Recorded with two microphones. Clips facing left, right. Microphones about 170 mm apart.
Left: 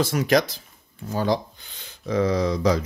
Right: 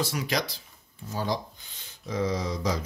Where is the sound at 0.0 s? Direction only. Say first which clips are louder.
Left 9 dB; 50° left (ahead or behind).